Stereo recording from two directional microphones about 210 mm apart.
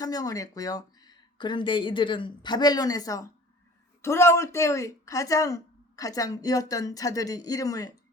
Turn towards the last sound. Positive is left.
turn(degrees=15)  # may be behind; listen again after turning